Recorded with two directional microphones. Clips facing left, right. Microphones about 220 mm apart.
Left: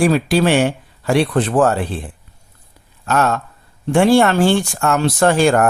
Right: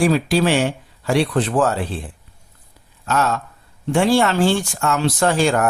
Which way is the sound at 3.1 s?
55° left (ahead or behind).